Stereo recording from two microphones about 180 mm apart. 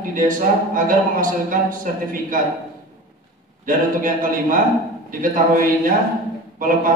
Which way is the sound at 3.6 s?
50° right (ahead or behind).